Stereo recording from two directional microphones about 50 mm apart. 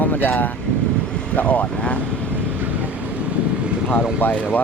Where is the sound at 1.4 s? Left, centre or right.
Left.